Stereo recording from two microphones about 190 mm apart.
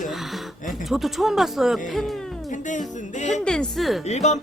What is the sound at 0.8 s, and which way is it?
Speech, centre (ahead or behind).